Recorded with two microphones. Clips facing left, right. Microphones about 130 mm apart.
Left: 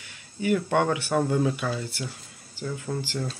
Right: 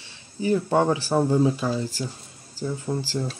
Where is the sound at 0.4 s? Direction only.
35° right (ahead or behind).